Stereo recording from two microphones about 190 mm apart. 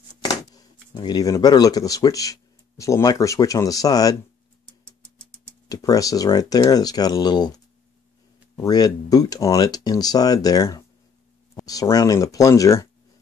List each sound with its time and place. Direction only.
0.2 s speech: 20° left (ahead or behind)
5.7 s speech: 20° left (ahead or behind)